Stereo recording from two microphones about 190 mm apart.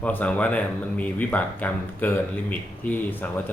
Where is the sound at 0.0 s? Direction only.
5° left (ahead or behind).